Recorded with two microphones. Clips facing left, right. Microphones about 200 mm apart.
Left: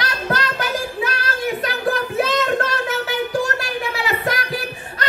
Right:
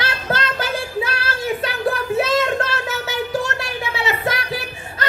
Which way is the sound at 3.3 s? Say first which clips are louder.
Left 1 dB; 25° right (ahead or behind).